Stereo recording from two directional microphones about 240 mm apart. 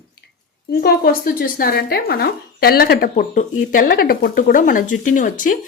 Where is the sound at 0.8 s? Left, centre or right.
Left.